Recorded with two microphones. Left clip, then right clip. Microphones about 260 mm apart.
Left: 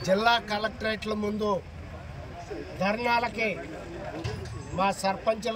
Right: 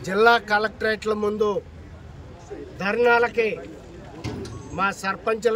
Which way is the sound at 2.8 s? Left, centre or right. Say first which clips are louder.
Right 7 dB; centre.